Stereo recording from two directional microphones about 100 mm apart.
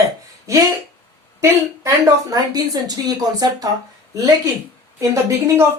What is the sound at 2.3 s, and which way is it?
Speech, 40° right (ahead or behind).